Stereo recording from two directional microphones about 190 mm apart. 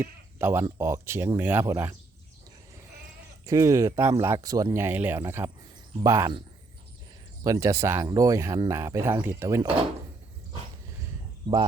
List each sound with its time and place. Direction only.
0.0 s speech: 10° right (ahead or behind)
3.4 s speech: 15° right (ahead or behind)
7.4 s speech: 15° right (ahead or behind)